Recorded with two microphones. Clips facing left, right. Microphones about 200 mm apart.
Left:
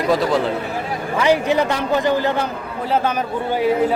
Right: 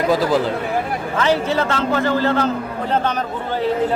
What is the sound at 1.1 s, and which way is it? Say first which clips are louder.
A man's voice: left 2 dB; 15° left (ahead or behind).